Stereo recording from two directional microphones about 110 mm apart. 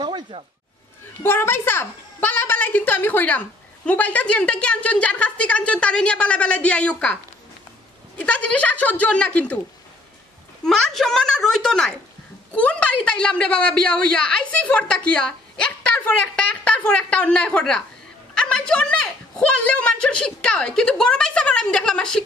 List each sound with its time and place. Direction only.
0.0 s a sound: 45° right (ahead or behind)
1.2 s a woman's voice: 20° left (ahead or behind)
8.2 s a woman's voice: 10° left (ahead or behind)
10.6 s a child's voice: 5° left (ahead or behind)